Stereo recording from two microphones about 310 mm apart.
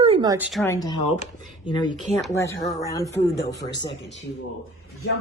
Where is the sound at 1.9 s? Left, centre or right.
Centre.